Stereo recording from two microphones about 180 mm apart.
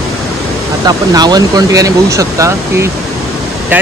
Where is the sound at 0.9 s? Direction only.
20° right (ahead or behind).